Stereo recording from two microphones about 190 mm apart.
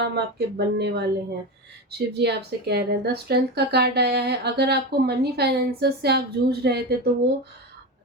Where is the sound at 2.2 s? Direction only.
60° right (ahead or behind).